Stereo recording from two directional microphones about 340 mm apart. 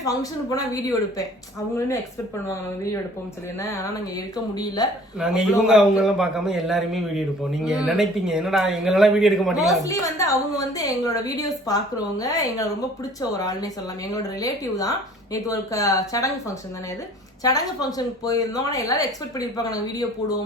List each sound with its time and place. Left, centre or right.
0.0 s a woman's voice: centre
4.5 s a woman's voice: centre
5.2 s a man's voice: centre
17.4 s a woman's voice: centre